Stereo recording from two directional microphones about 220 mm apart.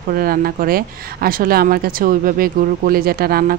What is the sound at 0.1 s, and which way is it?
A woman's voice, 40° right (ahead or behind).